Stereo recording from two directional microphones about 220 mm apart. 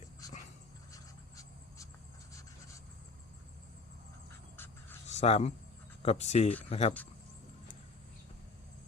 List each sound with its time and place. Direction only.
0.9 s insect: 15° left (ahead or behind)
2.3 s writing: 15° left (ahead or behind)
4.5 s a sound: 10° left (ahead or behind)
5.0 s speech: 30° left (ahead or behind)